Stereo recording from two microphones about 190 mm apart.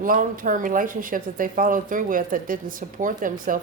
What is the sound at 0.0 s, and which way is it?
Speech, 45° right (ahead or behind).